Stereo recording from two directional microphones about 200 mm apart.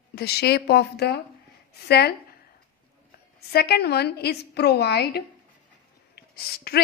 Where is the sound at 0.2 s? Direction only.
55° left (ahead or behind).